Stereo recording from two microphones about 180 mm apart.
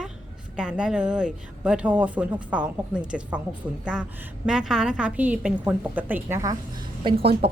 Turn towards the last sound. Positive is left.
turn(degrees=-30)  # may be behind; listen again after turning